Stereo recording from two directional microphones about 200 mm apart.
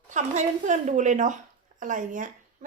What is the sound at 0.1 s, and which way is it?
Speech, 40° right (ahead or behind).